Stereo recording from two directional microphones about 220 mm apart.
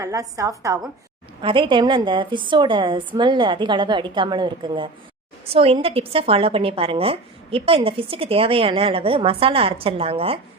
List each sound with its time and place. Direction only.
0.0 s a woman's voice: 15° right (ahead or behind)